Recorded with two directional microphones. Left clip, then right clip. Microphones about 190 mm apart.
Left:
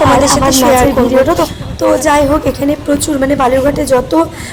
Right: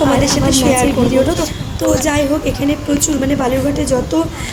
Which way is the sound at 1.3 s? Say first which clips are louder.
Left 6 dB; 10° left (ahead or behind).